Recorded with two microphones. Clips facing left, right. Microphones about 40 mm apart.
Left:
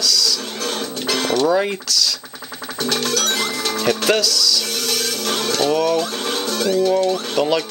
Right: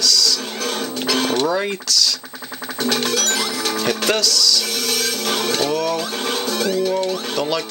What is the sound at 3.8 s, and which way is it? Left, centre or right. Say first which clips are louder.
Speech: left 3 dB; centre.